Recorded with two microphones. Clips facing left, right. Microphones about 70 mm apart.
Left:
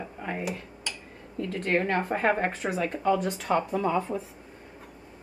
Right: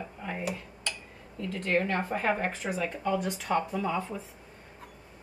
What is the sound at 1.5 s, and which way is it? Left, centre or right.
Speech, left.